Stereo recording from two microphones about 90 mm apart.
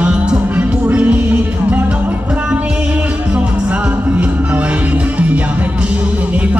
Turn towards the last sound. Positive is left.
turn(degrees=-15)  # may be behind; listen again after turning